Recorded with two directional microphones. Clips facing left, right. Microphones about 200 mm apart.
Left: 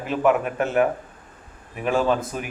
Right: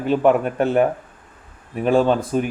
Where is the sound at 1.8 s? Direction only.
30° right (ahead or behind).